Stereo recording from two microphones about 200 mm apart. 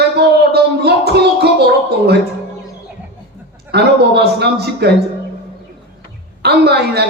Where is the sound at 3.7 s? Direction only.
55° right (ahead or behind).